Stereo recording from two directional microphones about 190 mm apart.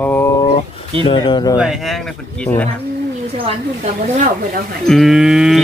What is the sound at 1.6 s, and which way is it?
Speech, centre (ahead or behind).